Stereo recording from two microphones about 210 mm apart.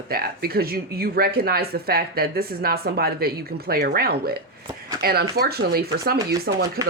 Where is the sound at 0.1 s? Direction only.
45° right (ahead or behind).